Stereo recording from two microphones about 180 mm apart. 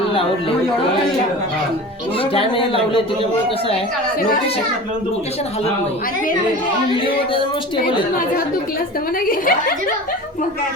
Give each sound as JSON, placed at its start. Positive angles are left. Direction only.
{"t": 2.3, "sound": "speech", "side_deg": 30}
{"t": 9.2, "sound": "speech", "side_deg": 55}